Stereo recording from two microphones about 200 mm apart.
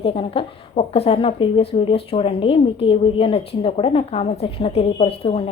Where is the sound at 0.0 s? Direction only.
25° left (ahead or behind).